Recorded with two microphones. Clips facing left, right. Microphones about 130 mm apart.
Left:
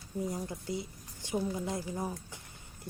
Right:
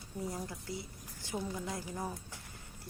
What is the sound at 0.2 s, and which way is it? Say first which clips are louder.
A woman's voice: left 4 dB; 20° left (ahead or behind).